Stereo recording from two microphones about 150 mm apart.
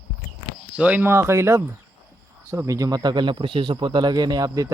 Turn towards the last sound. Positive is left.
turn(degrees=-25)  # may be behind; listen again after turning